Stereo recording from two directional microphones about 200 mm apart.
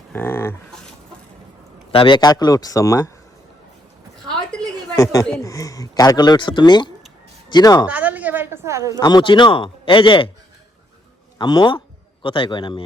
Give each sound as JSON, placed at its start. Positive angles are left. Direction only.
{"t": 0.1, "sound": "speech", "side_deg": 10}
{"t": 1.9, "sound": "speech", "side_deg": 25}
{"t": 5.4, "sound": "speech", "side_deg": 15}
{"t": 7.9, "sound": "a sound", "side_deg": -5}
{"t": 9.0, "sound": "speech", "side_deg": 20}
{"t": 11.3, "sound": "speech", "side_deg": 25}